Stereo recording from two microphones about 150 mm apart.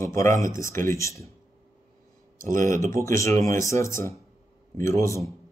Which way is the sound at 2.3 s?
60° right (ahead or behind).